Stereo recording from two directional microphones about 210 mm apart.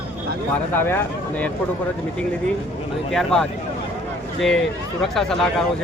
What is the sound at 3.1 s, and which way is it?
Speech, 5° left (ahead or behind).